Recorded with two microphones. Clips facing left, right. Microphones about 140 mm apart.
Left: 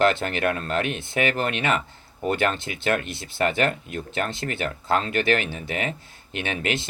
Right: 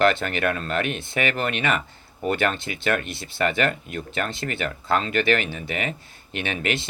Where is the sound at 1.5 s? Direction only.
55° right (ahead or behind).